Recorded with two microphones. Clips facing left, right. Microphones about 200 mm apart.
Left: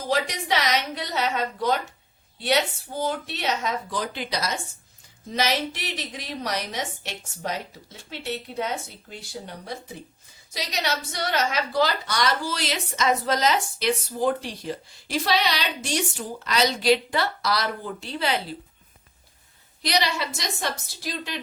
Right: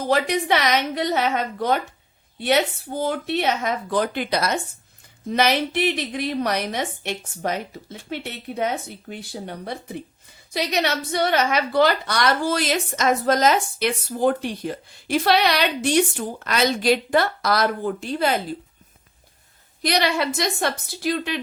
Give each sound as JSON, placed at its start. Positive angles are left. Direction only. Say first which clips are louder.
{"t": 0.0, "sound": "a woman's voice", "louder": "right 5 dB", "side_deg": -60}
{"t": 19.8, "sound": "a woman's voice", "louder": "right 4 dB", "side_deg": -55}